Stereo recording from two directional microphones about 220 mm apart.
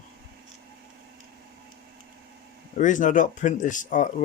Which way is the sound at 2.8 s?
35° left (ahead or behind).